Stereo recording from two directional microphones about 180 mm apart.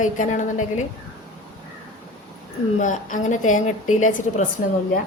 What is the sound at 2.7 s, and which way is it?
A woman's voice, 45° left (ahead or behind).